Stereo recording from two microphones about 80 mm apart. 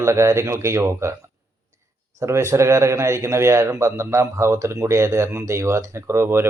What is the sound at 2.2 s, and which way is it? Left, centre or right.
Speech, right.